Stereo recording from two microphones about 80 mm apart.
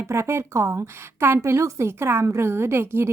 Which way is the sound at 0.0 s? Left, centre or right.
Right.